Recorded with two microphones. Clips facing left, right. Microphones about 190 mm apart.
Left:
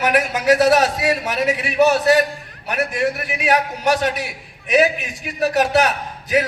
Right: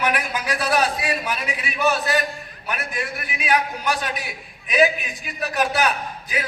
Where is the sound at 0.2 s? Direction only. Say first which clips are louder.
Left 10 dB; 75° left (ahead or behind).